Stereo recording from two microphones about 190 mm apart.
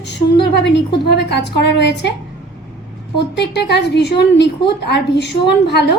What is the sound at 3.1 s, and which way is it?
A woman's voice, 65° left (ahead or behind).